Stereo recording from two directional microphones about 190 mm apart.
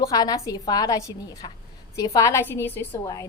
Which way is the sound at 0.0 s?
20° left (ahead or behind).